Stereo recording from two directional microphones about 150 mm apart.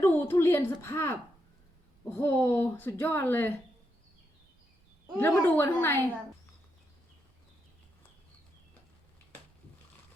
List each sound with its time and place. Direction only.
0.0 s a sound: 15° left (ahead or behind)
2.1 s a woman's voice: 15° left (ahead or behind)
5.4 s a woman's voice: 15° left (ahead or behind)